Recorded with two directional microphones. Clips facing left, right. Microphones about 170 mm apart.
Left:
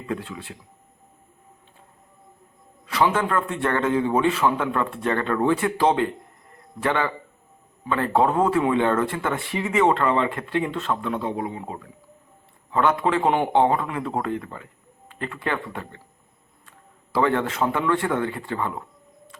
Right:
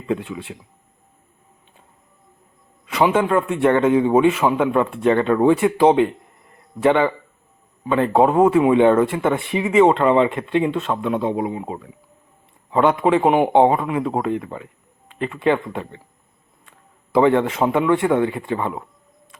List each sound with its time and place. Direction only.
0.1 s speech: 20° right (ahead or behind)
2.8 s a man's voice: 20° right (ahead or behind)
17.1 s speech: 20° right (ahead or behind)